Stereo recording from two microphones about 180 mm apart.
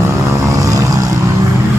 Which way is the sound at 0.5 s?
20° right (ahead or behind).